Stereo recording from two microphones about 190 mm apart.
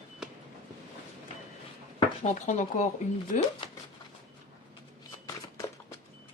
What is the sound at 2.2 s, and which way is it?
Speech, 40° left (ahead or behind).